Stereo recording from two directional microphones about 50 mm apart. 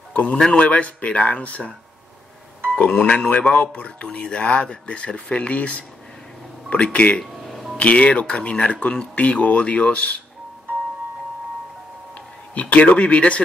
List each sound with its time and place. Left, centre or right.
0.1 s a man's voice: left
3.0 s a man's voice: left
7.4 s music: centre
7.7 s a man's voice: left
9.1 s a man's voice: left
12.5 s a man's voice: left